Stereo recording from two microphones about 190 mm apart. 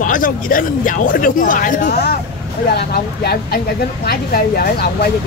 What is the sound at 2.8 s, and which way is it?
Speech, 55° left (ahead or behind).